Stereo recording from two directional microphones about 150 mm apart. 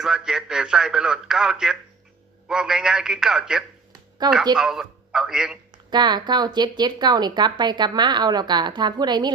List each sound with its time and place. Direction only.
0.0 s speech: 5° right (ahead or behind)
4.2 s speech: 30° right (ahead or behind)
4.5 s a man's voice: 5° right (ahead or behind)
5.9 s speech: 30° right (ahead or behind)